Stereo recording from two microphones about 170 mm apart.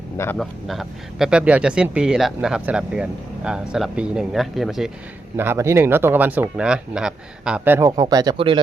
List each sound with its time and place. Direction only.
0.3 s speech: centre (ahead or behind)
5.4 s speech: 15° right (ahead or behind); by 8.6 s 30° right (ahead or behind)